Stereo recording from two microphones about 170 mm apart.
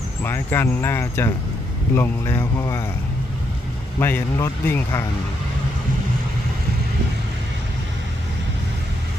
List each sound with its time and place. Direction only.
0.2 s speech: 15° left (ahead or behind)
4.0 s speech: 15° left (ahead or behind)